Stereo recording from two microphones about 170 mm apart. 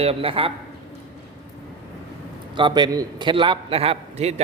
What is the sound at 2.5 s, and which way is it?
A man's voice, 25° right (ahead or behind).